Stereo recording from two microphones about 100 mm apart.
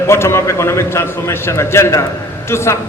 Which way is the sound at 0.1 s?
25° left (ahead or behind).